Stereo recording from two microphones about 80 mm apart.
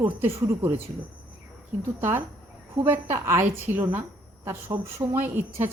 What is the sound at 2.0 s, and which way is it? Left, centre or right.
A woman's voice, right.